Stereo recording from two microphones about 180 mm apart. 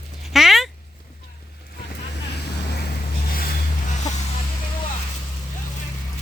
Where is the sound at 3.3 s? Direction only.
55° left (ahead or behind).